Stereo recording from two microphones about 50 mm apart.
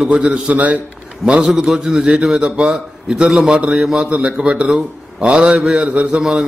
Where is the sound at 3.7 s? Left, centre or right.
Centre.